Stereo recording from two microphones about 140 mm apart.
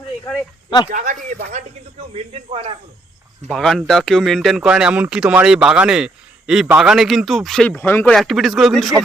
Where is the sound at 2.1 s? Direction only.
45° right (ahead or behind).